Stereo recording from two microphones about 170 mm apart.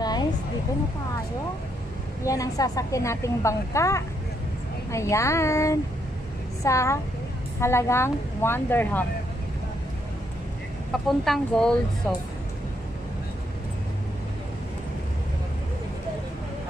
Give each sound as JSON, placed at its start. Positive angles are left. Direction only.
{"t": 0.0, "sound": "a sound", "side_deg": 25}
{"t": 2.2, "sound": "a woman's voice", "side_deg": 20}
{"t": 10.9, "sound": "speech", "side_deg": 0}